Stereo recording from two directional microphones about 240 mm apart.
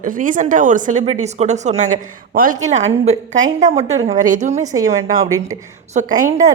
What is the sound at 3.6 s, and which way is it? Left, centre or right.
A woman's voice, right.